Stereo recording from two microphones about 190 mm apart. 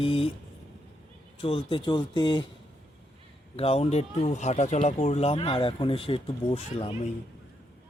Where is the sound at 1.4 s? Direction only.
30° left (ahead or behind).